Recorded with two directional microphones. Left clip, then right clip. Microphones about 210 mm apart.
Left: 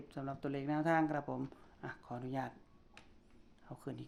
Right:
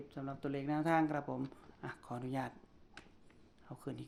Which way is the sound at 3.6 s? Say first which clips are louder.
Right 1 dB; centre (ahead or behind).